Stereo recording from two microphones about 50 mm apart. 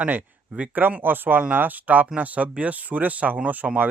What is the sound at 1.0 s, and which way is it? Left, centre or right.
Speech, right.